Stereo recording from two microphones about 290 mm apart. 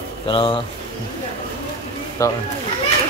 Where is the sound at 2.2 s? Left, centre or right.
Centre.